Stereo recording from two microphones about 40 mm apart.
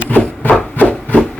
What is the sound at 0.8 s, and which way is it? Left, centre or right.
Rub, left.